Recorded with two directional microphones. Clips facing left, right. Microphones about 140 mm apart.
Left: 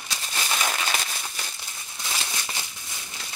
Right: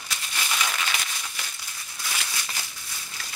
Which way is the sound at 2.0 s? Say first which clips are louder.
Left 1 dB; 25° left (ahead or behind).